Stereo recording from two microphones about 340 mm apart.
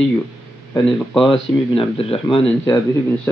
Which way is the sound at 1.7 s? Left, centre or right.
Centre.